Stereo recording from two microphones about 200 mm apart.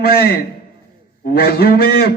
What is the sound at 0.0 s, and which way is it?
A man's voice, 50° left (ahead or behind).